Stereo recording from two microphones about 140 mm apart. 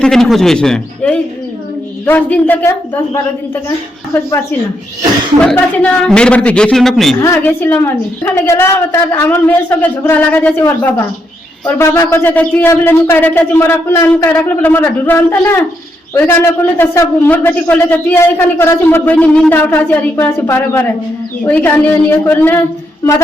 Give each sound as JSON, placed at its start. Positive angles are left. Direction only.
{"t": 0.0, "sound": "a man's voice", "side_deg": 5}
{"t": 5.4, "sound": "a man's voice", "side_deg": 10}
{"t": 7.2, "sound": "a man's voice", "side_deg": 20}
{"t": 16.7, "sound": "a man's voice", "side_deg": 20}